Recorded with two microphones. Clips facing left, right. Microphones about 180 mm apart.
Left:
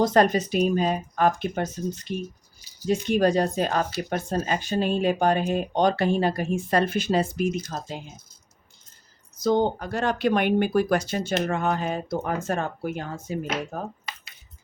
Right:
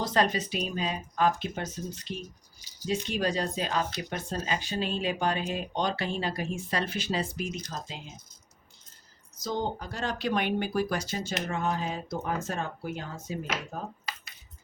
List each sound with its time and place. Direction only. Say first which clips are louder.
0.0 s speech: left 7 dB; 50° left (ahead or behind)
7.4 s speech: left 10 dB; 5° left (ahead or behind)
9.4 s speech: left 10 dB; 60° left (ahead or behind)